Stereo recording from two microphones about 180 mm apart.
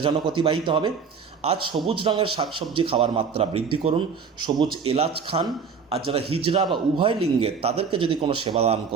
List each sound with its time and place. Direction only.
0.0 s a man's voice: 30° right (ahead or behind)